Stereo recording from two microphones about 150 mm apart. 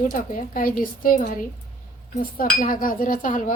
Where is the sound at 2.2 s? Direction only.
70° left (ahead or behind).